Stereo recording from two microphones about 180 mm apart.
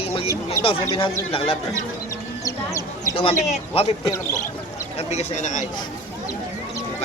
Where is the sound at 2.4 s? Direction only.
20° left (ahead or behind).